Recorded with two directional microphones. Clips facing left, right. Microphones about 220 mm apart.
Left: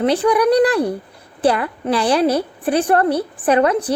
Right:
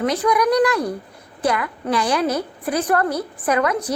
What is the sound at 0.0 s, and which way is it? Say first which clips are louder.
A woman's voice: left 4 dB; 30° left (ahead or behind).